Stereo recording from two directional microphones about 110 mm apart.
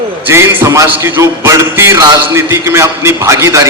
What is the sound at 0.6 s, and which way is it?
A man's voice, 25° right (ahead or behind).